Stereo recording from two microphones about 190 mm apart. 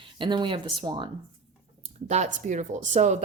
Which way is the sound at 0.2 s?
25° right (ahead or behind).